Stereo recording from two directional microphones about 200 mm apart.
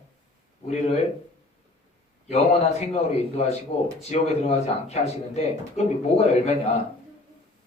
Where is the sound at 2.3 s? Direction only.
35° left (ahead or behind).